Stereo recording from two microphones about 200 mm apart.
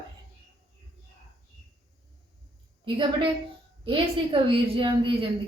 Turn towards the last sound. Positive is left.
turn(degrees=-25)  # may be behind; listen again after turning